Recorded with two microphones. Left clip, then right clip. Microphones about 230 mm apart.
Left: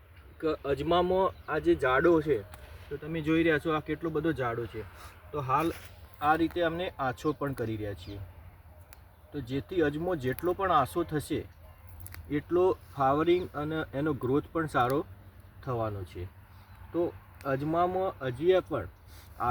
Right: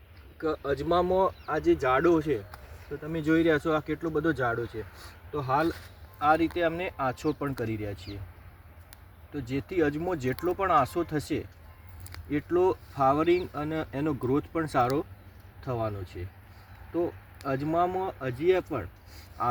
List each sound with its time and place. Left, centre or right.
0.9 s speech: centre; by 3.9 s right
4.0 s speech: centre
9.3 s speech: centre